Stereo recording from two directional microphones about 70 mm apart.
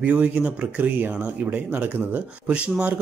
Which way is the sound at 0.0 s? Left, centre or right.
Centre.